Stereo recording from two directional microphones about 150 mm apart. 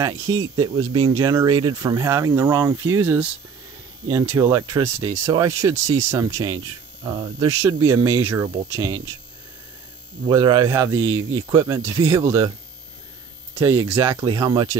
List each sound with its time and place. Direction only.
0.0 s speech: 20° right (ahead or behind)
10.2 s speech: 30° right (ahead or behind)
10.7 s speech: 15° right (ahead or behind)
13.6 s speech: 20° right (ahead or behind)